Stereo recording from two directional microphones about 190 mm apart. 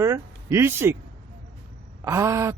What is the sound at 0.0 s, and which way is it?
Speech, 15° right (ahead or behind).